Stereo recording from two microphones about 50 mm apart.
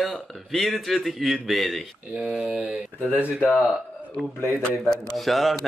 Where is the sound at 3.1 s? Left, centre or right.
Right.